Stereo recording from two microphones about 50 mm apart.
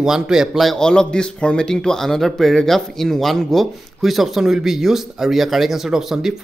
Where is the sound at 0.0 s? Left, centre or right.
Centre.